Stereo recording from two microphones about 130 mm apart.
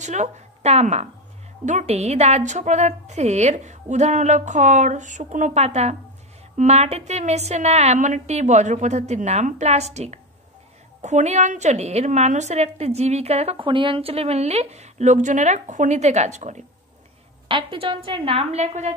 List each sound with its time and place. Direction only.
0.0 s a woman's voice: 65° right (ahead or behind)
5.6 s a woman's voice: 55° right (ahead or behind)
17.5 s a woman's voice: 40° right (ahead or behind); by 18.9 s 60° right (ahead or behind)